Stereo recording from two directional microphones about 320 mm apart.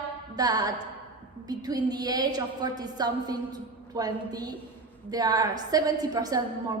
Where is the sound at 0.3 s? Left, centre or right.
Centre.